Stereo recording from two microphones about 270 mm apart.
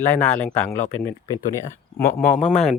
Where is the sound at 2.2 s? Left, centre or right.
Left.